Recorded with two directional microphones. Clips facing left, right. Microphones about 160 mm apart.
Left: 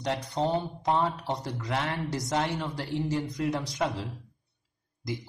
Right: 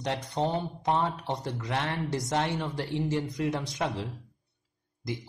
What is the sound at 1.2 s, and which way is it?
Speech, 25° right (ahead or behind).